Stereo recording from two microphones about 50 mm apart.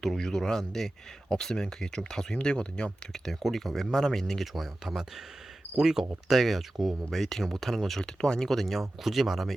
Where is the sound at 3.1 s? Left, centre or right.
Centre.